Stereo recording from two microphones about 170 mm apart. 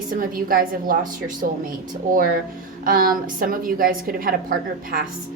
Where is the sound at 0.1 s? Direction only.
55° right (ahead or behind).